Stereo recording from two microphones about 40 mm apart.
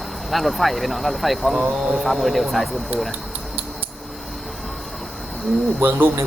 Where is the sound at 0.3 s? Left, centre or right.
Centre.